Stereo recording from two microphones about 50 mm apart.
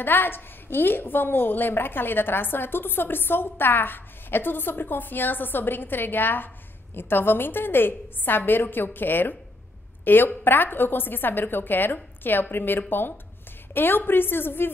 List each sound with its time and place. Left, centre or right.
0.0 s a woman's voice: left